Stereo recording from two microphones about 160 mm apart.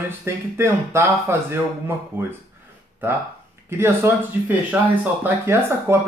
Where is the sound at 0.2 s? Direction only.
15° right (ahead or behind).